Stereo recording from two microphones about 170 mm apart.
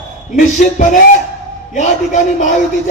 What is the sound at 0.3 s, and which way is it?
Music, 50° left (ahead or behind).